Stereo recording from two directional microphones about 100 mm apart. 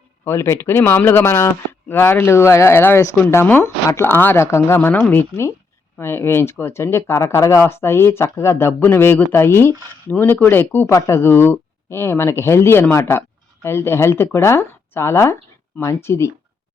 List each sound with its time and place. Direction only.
0.3 s speech: 25° left (ahead or behind)